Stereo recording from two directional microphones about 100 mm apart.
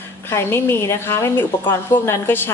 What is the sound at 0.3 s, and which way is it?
A woman's voice, 25° left (ahead or behind).